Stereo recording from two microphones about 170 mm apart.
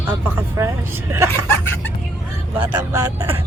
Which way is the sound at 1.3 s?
15° left (ahead or behind).